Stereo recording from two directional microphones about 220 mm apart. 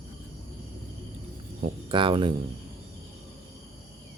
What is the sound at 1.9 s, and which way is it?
Speech, 25° right (ahead or behind).